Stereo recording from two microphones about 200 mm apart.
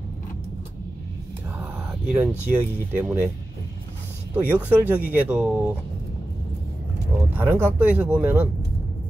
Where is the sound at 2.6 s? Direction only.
10° right (ahead or behind).